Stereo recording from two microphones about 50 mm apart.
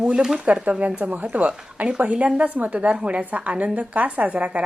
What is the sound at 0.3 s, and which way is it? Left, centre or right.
A woman's voice, right.